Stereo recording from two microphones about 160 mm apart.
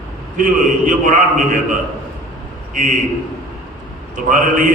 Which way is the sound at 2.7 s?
55° right (ahead or behind).